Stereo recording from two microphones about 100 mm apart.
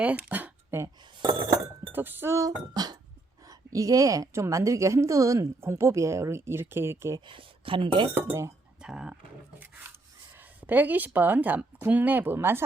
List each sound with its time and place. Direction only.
0.0 s a sound: 15° right (ahead or behind)
1.9 s chink: 20° right (ahead or behind)
2.7 s a sound: 40° right (ahead or behind)
3.4 s a woman's voice: 35° right (ahead or behind)
7.3 s speech: 60° right (ahead or behind)
8.3 s speech: 30° right (ahead or behind)
8.8 s speech: 5° right (ahead or behind)
10.6 s speech: 15° right (ahead or behind)